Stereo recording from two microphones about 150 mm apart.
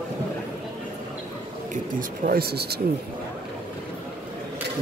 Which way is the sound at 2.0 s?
80° right.